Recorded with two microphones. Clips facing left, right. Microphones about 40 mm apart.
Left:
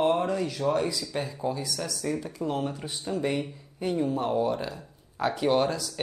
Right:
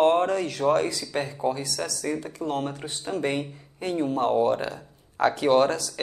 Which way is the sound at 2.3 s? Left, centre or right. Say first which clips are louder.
Right 1 dB; right.